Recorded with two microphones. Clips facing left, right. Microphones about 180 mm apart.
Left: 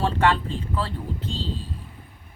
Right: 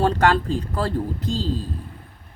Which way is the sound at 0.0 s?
40° right (ahead or behind).